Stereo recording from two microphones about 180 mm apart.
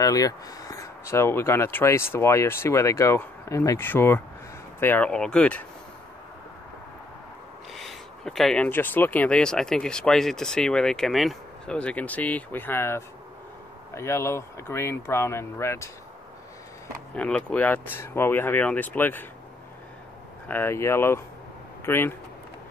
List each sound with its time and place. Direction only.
0.0 s speech: 20° left (ahead or behind)
7.7 s speech: centre (ahead or behind)
17.1 s speech: 5° left (ahead or behind)
20.4 s speech: 10° left (ahead or behind)